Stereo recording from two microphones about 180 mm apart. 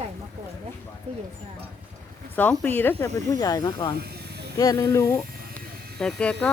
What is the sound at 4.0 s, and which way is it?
Snake, 65° right (ahead or behind).